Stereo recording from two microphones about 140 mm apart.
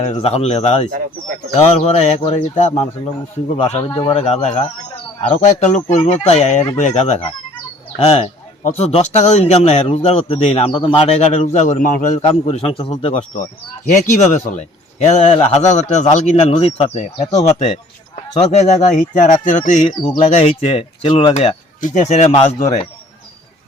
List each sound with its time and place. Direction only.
0.0 s a man's voice: 50° left (ahead or behind)
0.9 s speech: 80° right
1.5 s a man's voice: 45° left (ahead or behind); by 12.2 s 65° left (ahead or behind)
12.2 s a man's voice: 45° left (ahead or behind)
14.1 s a man's voice: 60° left (ahead or behind)
20.2 s speech: 45° left (ahead or behind)
21.3 s speech: 60° left (ahead or behind)